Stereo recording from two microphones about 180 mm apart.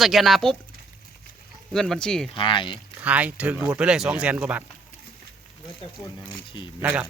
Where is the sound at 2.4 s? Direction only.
25° left (ahead or behind).